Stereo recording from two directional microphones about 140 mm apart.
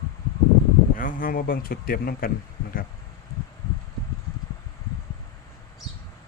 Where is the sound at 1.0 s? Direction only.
90° left.